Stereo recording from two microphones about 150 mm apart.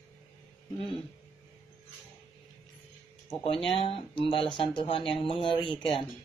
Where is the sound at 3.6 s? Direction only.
40° left (ahead or behind).